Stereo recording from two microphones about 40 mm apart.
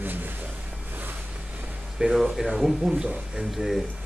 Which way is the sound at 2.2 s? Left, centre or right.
Centre.